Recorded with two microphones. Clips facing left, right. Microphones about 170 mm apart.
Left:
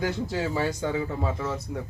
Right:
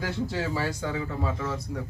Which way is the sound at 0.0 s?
20° left (ahead or behind).